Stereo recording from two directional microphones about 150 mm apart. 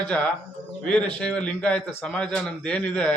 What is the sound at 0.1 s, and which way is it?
A man's voice, 10° left (ahead or behind).